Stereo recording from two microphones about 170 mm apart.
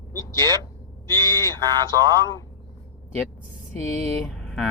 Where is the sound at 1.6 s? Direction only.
25° right (ahead or behind).